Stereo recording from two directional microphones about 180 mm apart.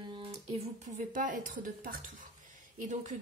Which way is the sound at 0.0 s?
25° right (ahead or behind).